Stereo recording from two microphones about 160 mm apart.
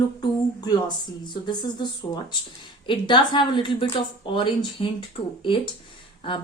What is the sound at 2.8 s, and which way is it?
A woman's voice, 30° left (ahead or behind).